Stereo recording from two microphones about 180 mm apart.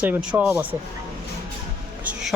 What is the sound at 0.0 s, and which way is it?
Speech, 5° right (ahead or behind).